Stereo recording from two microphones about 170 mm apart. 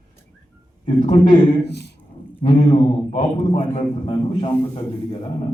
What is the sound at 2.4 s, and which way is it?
A man's voice, 35° left (ahead or behind).